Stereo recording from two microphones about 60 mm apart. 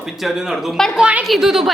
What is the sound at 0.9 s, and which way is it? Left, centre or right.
Speech, centre.